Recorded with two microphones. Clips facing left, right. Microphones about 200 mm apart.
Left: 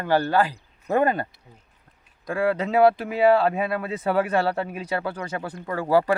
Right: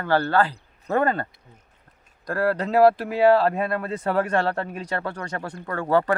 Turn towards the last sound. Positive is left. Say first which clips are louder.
# left 1 dB
turn(degrees=10)  # may be behind; listen again after turning